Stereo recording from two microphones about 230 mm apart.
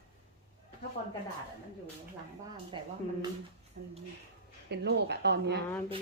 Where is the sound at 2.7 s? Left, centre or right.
Right.